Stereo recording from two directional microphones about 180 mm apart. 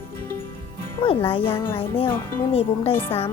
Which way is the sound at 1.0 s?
30° left (ahead or behind).